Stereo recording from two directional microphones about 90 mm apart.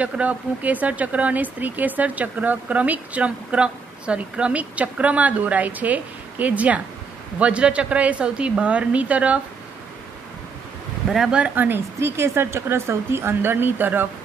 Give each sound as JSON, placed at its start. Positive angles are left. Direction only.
{"t": 0.0, "sound": "speech", "side_deg": -15}
{"t": 11.1, "sound": "speech", "side_deg": -5}